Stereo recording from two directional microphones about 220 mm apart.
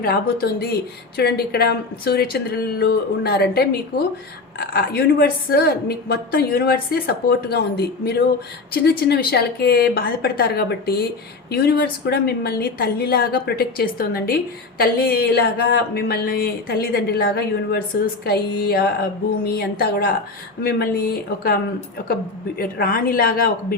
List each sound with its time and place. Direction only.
0.0 s speech: 45° left (ahead or behind)